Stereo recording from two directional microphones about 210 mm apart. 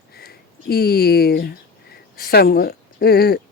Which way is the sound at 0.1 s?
50° left (ahead or behind).